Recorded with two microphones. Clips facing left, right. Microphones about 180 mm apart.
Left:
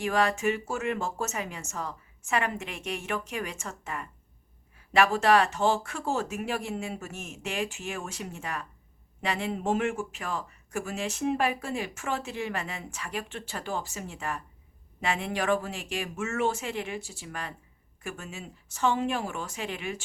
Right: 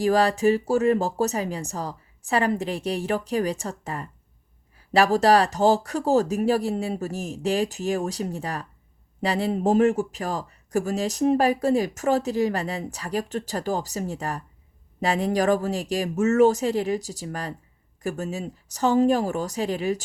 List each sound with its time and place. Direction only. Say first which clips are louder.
0.0 s speech: right 7 dB; 35° right (ahead or behind)